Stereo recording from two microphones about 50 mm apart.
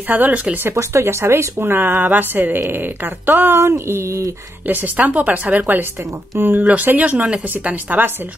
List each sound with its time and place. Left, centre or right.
0.1 s a woman's voice: right
0.7 s a woman's voice: right
3.5 s a sound: right
4.6 s a woman's voice: right
6.6 s a woman's voice: right